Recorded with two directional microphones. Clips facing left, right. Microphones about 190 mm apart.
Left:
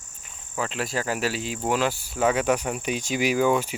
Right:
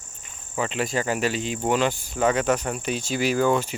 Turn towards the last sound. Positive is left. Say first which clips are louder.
# even
turn(degrees=10)  # may be behind; listen again after turning